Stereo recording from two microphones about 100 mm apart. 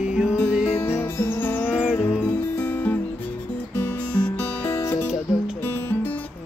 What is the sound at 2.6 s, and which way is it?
Music, 15° left (ahead or behind).